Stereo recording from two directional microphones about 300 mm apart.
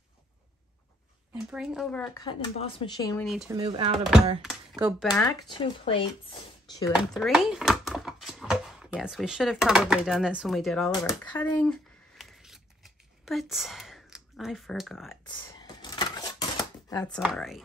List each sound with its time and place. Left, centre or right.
1.3 s speech: centre
2.2 s speech: centre
3.3 s speech: centre
3.5 s speech: centre
4.4 s speech: centre
5.1 s speech: centre
6.9 s speech: centre
10.9 s scissors: centre
15.2 s a sound: centre
16.9 s speech: centre